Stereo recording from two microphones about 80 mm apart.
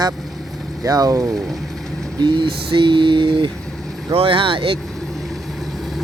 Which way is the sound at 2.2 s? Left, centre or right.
Right.